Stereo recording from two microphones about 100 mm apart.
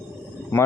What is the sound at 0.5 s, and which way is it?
Speech, 20° left (ahead or behind).